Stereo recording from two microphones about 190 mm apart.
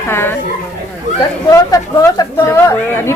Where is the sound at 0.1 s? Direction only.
10° left (ahead or behind).